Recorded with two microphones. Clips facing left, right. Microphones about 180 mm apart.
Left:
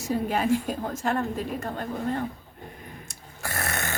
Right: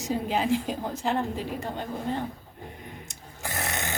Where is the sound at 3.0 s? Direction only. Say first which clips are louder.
Left 2 dB; 15° right (ahead or behind).